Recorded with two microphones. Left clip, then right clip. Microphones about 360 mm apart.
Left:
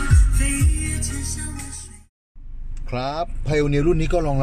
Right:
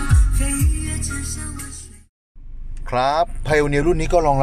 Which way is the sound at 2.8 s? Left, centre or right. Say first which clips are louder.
Right 8 dB; centre.